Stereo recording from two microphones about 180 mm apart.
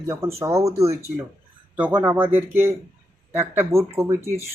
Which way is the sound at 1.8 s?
10° right (ahead or behind).